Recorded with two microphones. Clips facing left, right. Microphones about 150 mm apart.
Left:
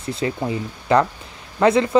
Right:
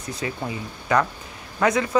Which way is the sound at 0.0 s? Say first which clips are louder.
Left 6 dB; 30° left (ahead or behind).